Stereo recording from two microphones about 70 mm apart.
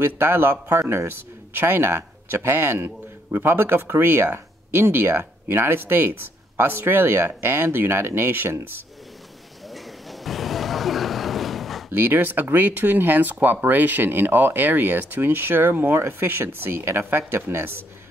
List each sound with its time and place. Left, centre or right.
0.0 s speech: right
9.7 s a sound: centre
11.9 s speech: right